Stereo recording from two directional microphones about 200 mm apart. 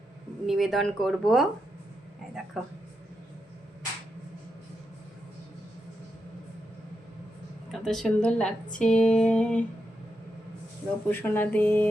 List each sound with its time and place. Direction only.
0.4 s speech: centre (ahead or behind)
2.5 s speech: centre (ahead or behind)
7.7 s speech: centre (ahead or behind)
11.1 s speech: 10° left (ahead or behind)